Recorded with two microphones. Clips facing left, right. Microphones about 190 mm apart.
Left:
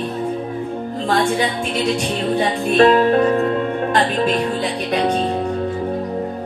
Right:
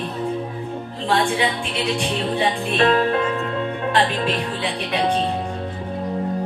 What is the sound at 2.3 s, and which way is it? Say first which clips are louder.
Music: left 7 dB; 40° left (ahead or behind).